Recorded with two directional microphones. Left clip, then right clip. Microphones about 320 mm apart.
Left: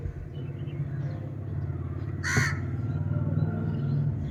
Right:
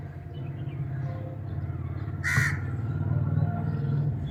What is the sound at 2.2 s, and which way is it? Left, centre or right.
Crow, left.